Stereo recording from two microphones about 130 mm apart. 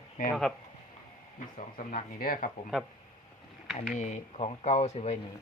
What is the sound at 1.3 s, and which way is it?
Speech, 90° left.